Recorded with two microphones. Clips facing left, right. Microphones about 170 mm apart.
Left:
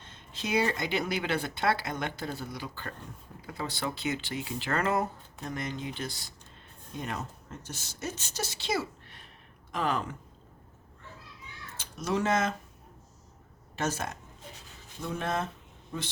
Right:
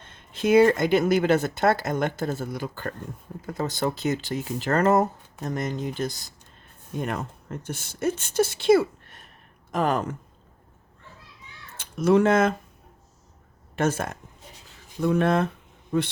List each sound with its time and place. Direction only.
0.0 s speech: 55° right (ahead or behind)
6.9 s speech: 55° right (ahead or behind)
11.8 s speech: 55° right (ahead or behind)
13.7 s speech: 55° right (ahead or behind)